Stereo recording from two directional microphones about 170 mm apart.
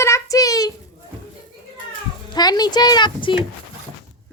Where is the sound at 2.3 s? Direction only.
25° left (ahead or behind).